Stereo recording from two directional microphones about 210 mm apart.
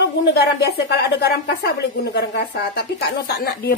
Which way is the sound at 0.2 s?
50° left (ahead or behind).